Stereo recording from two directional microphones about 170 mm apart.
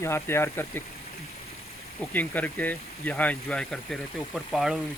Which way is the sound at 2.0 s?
10° left (ahead or behind).